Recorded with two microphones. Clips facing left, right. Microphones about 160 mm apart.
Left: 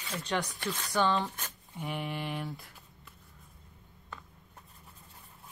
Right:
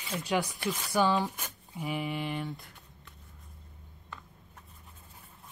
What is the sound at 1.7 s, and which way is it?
Speech, centre (ahead or behind).